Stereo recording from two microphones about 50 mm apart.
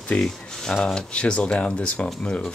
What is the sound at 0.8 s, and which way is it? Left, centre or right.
Speech, centre.